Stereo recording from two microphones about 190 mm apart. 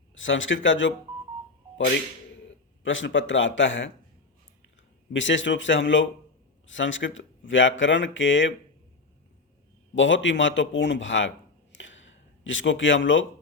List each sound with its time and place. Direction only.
0.1 s speech: 85° left
2.8 s speech: 80° left
5.1 s speech: 75° left (ahead or behind)
9.9 s speech: 75° left (ahead or behind)
11.7 s a sound: 80° left